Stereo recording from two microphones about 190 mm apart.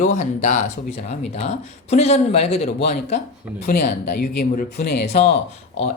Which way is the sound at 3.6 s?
55° left (ahead or behind).